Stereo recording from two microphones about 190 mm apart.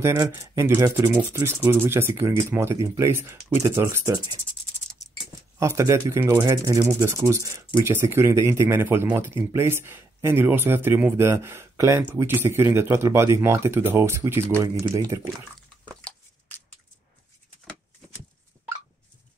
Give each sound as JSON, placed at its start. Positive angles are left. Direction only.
{"t": 0.0, "sound": "speech", "side_deg": -20}
{"t": 5.6, "sound": "speech", "side_deg": -15}